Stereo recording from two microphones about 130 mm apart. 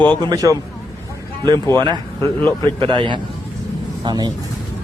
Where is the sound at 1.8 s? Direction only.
35° right (ahead or behind).